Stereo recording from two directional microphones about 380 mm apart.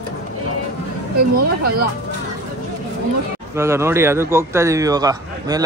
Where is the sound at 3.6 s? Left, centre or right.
Centre.